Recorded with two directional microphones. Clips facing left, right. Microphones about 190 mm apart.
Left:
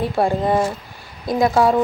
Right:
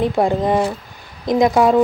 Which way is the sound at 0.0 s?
20° right (ahead or behind).